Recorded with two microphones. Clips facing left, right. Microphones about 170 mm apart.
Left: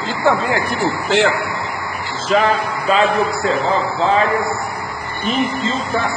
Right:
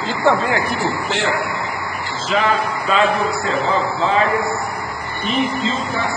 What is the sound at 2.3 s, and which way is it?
Speech, 40° left (ahead or behind).